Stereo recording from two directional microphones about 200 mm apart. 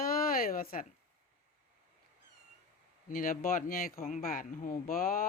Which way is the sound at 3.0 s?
45° left (ahead or behind).